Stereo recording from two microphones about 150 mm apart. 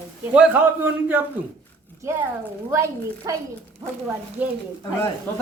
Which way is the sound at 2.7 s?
20° right (ahead or behind).